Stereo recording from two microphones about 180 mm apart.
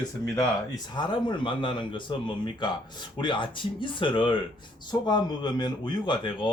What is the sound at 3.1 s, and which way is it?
Speech, 25° left (ahead or behind).